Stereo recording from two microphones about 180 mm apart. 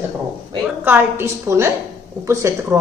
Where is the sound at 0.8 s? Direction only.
10° right (ahead or behind).